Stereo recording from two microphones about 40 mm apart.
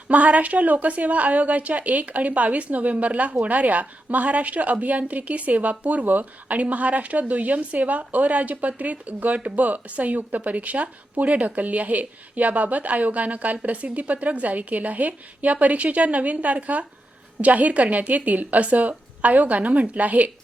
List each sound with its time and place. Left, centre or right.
0.1 s speech: right